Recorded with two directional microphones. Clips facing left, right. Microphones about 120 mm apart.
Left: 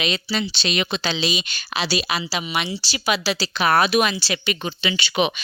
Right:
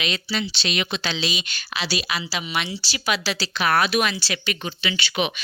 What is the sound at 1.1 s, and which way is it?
Speech, 20° left (ahead or behind).